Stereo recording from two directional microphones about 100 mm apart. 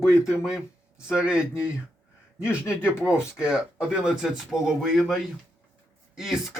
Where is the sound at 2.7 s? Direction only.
20° left (ahead or behind).